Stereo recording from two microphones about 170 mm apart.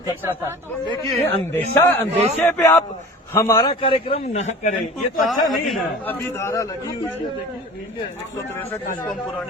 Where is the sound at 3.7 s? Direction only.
30° left (ahead or behind).